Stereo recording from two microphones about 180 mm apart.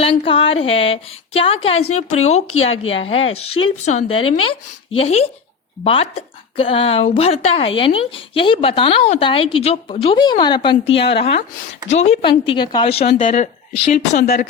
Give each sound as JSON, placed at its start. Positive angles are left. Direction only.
{"t": 0.0, "sound": "speech", "side_deg": 30}
{"t": 12.5, "sound": "speech", "side_deg": 25}